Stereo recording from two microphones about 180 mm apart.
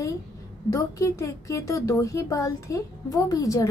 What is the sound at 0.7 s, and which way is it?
A woman's voice, 15° left (ahead or behind).